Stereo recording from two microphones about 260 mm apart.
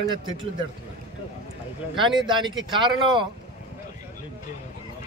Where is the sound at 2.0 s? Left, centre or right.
Centre.